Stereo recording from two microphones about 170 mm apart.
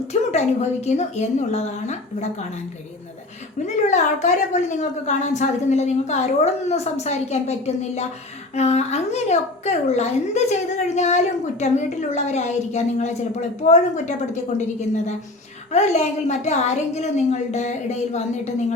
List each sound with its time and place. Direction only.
0.1 s a woman's voice: 40° left (ahead or behind)
3.8 s a woman's voice: 45° left (ahead or behind)